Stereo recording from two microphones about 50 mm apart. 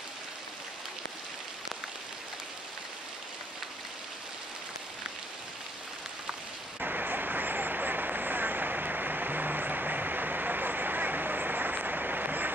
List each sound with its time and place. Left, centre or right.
6.8 s vehicle: right